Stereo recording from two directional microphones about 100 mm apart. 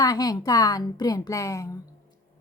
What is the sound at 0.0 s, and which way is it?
A woman's voice, 40° left (ahead or behind).